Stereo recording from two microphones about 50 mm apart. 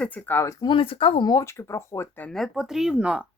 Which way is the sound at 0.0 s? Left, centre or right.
Left.